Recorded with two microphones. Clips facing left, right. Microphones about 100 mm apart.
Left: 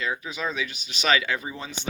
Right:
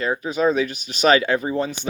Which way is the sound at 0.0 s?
45° right (ahead or behind).